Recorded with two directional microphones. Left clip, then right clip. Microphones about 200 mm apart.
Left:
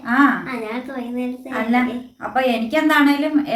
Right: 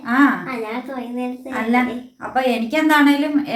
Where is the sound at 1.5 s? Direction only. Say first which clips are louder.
Right 1 dB; centre (ahead or behind).